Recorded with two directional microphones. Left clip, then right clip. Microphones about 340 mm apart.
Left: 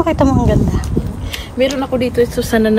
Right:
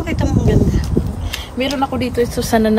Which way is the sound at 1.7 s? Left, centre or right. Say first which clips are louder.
Left 2 dB; right.